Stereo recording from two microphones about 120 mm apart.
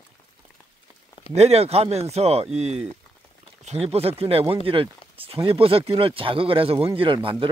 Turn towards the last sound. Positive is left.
turn(degrees=-40)  # may be behind; listen again after turning